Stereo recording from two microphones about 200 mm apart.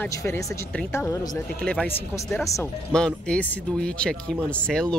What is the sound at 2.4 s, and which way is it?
Speech, 15° left (ahead or behind).